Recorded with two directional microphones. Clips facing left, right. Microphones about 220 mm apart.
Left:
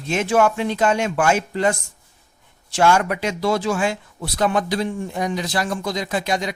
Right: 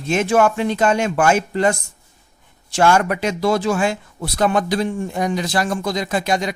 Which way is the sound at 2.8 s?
50° right (ahead or behind).